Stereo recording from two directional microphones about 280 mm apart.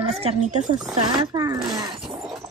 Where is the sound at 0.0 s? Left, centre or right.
Right.